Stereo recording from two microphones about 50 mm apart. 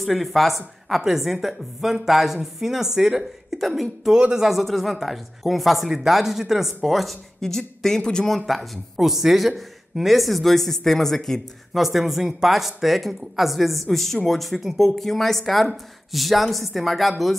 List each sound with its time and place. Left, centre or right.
0.0 s a woman's voice: centre
4.1 s speech: centre
4.5 s a woman's voice: centre
8.5 s a woman's voice: centre
11.7 s a woman's voice: centre